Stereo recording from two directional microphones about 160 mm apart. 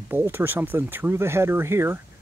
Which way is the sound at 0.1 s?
15° right (ahead or behind).